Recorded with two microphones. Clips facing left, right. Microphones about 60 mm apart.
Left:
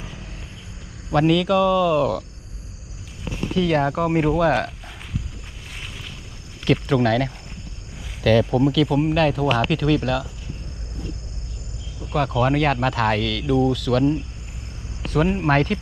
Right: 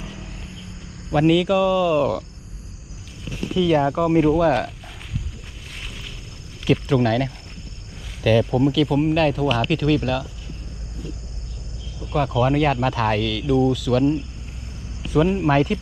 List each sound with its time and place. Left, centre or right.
1.1 s speech: centre
3.2 s speech: centre
4.4 s speech: centre
6.7 s speech: centre
8.4 s speech: centre
12.1 s speech: centre
15.1 s speech: left